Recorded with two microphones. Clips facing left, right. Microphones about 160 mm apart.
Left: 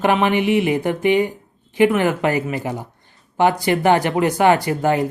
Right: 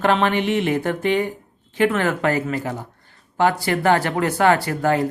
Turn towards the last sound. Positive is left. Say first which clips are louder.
# left 2 dB
turn(degrees=20)  # may be behind; listen again after turning